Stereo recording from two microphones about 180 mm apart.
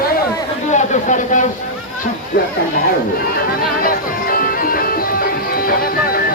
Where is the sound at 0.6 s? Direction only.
40° left (ahead or behind).